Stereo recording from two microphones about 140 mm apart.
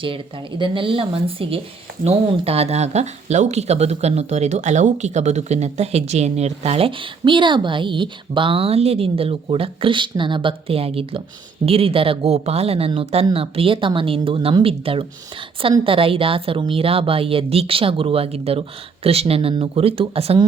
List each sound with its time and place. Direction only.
0.6 s a woman's voice: 40° right (ahead or behind)